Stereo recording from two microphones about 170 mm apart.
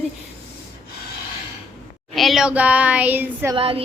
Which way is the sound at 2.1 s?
Centre (ahead or behind).